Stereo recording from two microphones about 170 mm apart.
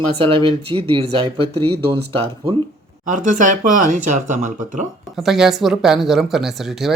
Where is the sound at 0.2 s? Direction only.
30° right (ahead or behind).